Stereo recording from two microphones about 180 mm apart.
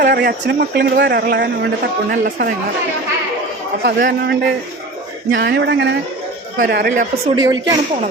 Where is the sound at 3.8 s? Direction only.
80° right.